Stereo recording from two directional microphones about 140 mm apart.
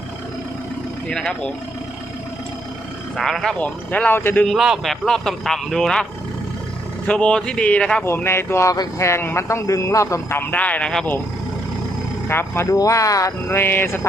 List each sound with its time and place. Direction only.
1.0 s speech: 5° left (ahead or behind)
3.2 s speech: centre (ahead or behind)
4.4 s a man's voice: 5° right (ahead or behind)
7.1 s speech: 5° left (ahead or behind)
8.0 s speech: 15° left (ahead or behind)
12.3 s speech: 15° left (ahead or behind)